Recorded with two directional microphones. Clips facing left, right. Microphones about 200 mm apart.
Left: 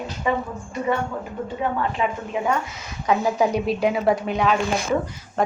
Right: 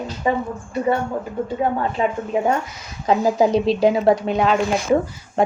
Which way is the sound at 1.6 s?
35° right (ahead or behind).